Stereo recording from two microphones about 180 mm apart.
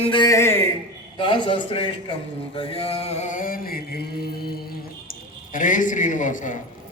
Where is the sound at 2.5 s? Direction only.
30° left (ahead or behind); by 4.6 s 60° left (ahead or behind).